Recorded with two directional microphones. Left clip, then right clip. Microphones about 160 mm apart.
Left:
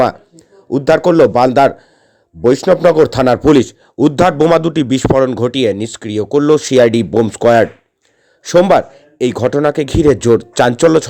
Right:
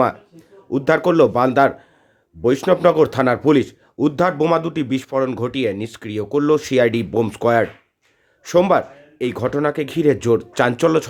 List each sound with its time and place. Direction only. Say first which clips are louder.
0.7 s a man's voice: left 6 dB; 25° left (ahead or behind)